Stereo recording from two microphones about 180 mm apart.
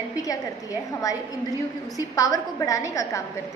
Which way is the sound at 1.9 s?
20° left (ahead or behind).